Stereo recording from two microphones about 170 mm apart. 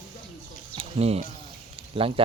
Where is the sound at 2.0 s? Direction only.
30° right (ahead or behind).